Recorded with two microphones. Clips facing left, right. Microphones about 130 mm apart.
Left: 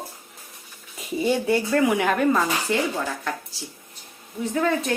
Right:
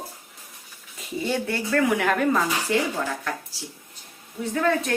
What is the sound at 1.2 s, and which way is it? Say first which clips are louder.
Speech: left 5 dB; 15° left (ahead or behind).